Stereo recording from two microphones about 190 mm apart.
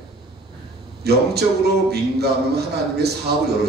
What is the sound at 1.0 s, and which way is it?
A man's voice, 60° right (ahead or behind).